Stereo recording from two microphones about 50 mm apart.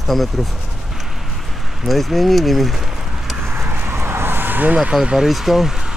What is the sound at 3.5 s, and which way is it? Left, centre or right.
Vehicle, right.